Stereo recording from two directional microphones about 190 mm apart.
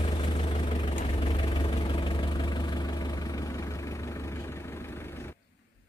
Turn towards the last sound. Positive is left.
turn(degrees=10)  # may be behind; listen again after turning